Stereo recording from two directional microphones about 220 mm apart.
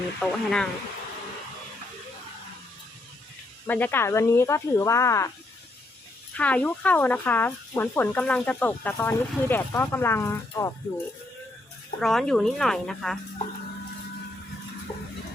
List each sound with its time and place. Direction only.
0.2 s speech: 5° left (ahead or behind)
3.7 s speech: 10° left (ahead or behind)
6.3 s speech: 5° left (ahead or behind)
11.9 s speech: centre (ahead or behind)